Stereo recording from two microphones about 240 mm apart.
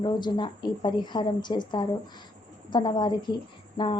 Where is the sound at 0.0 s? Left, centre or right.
Centre.